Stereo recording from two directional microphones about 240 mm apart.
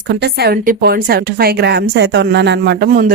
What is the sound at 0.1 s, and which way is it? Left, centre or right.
A woman's voice, right.